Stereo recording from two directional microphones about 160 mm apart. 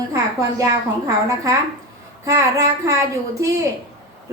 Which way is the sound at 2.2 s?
20° right (ahead or behind).